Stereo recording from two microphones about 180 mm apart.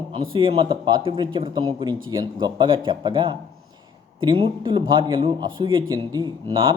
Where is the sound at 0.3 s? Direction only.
30° right (ahead or behind).